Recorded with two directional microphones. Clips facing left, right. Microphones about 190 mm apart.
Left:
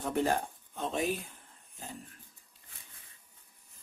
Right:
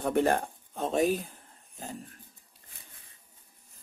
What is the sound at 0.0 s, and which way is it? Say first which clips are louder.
Speech: right 4 dB; 60° right (ahead or behind).